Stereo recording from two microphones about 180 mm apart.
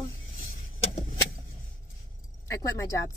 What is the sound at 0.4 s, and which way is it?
Vehicle, 50° left (ahead or behind).